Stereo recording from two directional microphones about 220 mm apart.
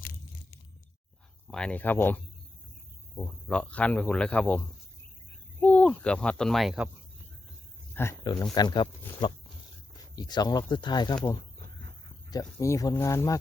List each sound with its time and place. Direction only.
1.5 s speech: 5° left (ahead or behind)
7.9 s speech: 15° left (ahead or behind)
12.3 s speech: 15° left (ahead or behind)